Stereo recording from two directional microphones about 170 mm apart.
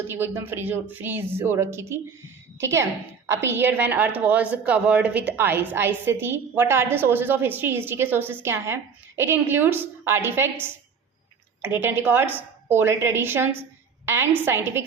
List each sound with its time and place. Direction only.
0.1 s a woman's voice: 10° right (ahead or behind)